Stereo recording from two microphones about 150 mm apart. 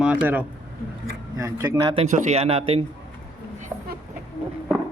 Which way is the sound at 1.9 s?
50° right (ahead or behind).